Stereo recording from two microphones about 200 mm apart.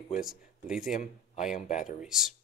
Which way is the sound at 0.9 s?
40° left (ahead or behind).